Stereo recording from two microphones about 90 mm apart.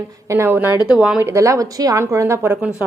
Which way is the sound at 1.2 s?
30° right (ahead or behind).